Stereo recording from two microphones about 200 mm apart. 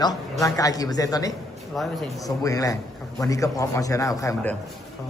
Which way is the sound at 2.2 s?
15° left (ahead or behind).